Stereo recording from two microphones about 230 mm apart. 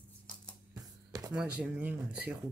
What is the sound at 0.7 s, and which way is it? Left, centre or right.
Music, centre.